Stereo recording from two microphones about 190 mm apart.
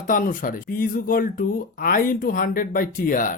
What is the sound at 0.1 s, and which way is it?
Speech, 45° left (ahead or behind).